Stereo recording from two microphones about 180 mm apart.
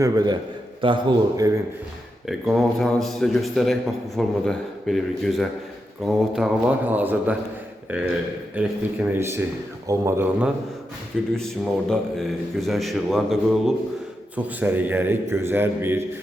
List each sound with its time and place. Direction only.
0.0 s a man's voice: 20° right (ahead or behind)
2.2 s a man's voice: centre (ahead or behind)
11.3 s a man's voice: 5° left (ahead or behind); by 16.0 s 10° right (ahead or behind)